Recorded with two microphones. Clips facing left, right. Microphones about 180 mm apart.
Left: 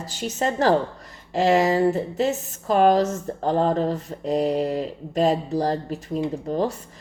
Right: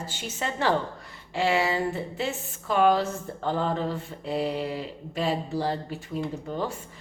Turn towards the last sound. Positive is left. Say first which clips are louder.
# left 7 dB
turn(degrees=35)  # may be behind; listen again after turning